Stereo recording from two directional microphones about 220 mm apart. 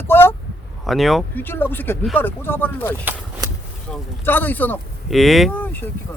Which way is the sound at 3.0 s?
10° right (ahead or behind).